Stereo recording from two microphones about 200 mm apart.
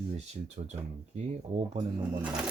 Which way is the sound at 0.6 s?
30° right (ahead or behind).